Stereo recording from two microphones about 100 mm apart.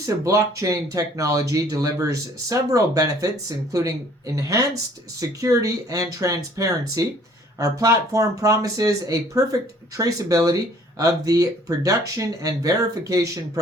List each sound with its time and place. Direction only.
0.0 s speech: 30° right (ahead or behind)